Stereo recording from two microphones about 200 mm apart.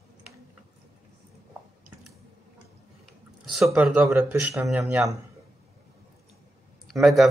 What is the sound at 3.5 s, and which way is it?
Speech, centre (ahead or behind).